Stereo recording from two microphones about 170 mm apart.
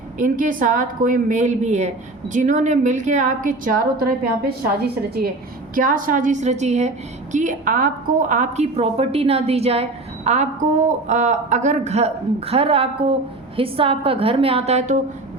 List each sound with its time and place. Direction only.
0.2 s a woman's voice: 50° right (ahead or behind)
5.7 s a woman's voice: 55° right (ahead or behind)